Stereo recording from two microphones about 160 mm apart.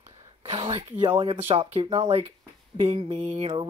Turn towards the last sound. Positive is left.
turn(degrees=-40)  # may be behind; listen again after turning